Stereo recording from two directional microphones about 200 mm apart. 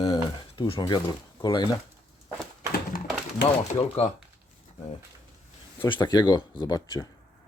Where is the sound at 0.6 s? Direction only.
20° left (ahead or behind).